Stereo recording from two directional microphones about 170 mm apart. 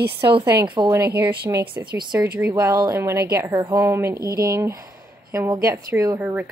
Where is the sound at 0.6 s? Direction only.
25° right (ahead or behind).